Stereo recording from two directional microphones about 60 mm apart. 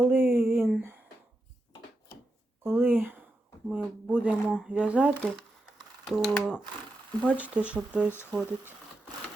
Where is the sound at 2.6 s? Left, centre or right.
Right.